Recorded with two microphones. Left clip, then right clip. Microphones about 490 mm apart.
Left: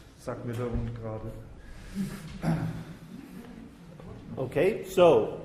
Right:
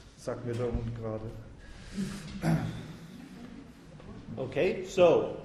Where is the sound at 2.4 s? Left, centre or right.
Right.